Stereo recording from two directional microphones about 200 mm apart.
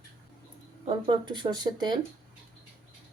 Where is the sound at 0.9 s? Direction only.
25° right (ahead or behind).